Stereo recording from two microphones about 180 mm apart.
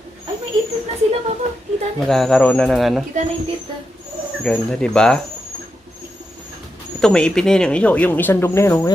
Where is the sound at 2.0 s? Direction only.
Centre (ahead or behind).